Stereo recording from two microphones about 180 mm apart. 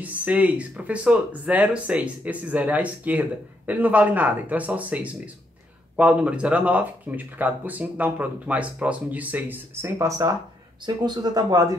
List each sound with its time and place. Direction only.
0.0 s speech: 10° right (ahead or behind)